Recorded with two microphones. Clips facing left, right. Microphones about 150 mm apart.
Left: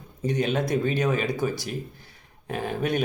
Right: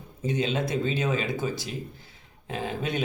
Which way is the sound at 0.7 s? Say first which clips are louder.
Left 3 dB; 50° left (ahead or behind).